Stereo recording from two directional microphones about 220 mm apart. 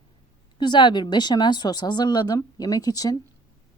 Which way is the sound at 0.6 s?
20° left (ahead or behind).